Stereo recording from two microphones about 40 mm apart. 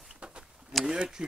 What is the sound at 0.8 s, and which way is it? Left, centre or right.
Speech, centre.